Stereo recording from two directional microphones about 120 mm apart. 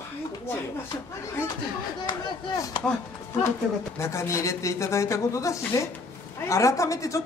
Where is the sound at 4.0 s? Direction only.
25° left (ahead or behind).